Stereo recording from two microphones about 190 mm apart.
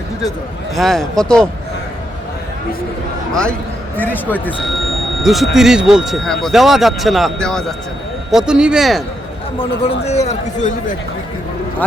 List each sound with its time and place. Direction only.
0.8 s speech: centre (ahead or behind)
3.9 s speech: 10° left (ahead or behind)
9.6 s a man's voice: 30° left (ahead or behind)